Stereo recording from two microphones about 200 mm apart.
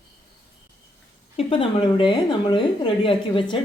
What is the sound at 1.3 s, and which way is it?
A woman's voice, 25° left (ahead or behind).